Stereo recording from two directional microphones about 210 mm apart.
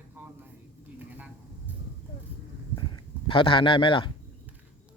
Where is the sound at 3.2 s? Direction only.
25° left (ahead or behind).